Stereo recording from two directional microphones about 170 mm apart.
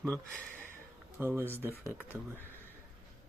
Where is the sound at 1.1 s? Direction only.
15° right (ahead or behind).